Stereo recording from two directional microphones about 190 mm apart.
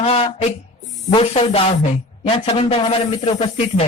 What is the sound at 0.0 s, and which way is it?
A man's voice, 30° left (ahead or behind).